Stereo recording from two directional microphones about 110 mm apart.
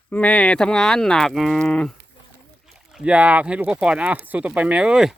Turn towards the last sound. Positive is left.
turn(degrees=-5)  # may be behind; listen again after turning